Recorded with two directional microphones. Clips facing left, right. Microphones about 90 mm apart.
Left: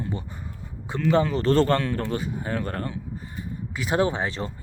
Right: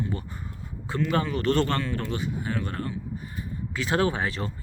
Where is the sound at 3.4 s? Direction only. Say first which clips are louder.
Even; 15° left (ahead or behind).